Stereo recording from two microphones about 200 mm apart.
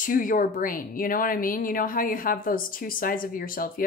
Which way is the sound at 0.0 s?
40° left (ahead or behind).